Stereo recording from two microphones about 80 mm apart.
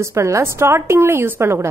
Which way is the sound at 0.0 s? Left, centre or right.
Right.